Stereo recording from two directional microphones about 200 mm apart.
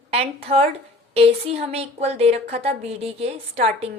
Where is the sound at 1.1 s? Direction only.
30° right (ahead or behind).